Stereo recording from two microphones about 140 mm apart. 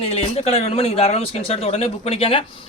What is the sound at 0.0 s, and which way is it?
Speech, 45° left (ahead or behind).